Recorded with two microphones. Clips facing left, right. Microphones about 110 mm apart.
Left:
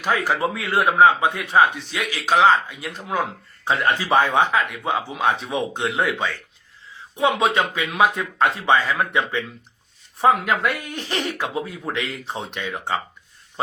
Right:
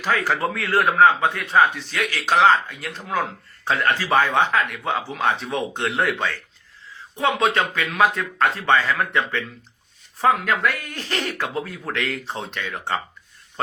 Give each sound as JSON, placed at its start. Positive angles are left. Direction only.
{"t": 0.3, "sound": "a man's voice", "side_deg": 15}
{"t": 11.3, "sound": "a man's voice", "side_deg": 5}